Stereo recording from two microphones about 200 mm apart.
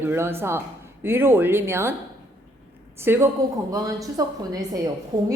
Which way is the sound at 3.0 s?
10° right (ahead or behind).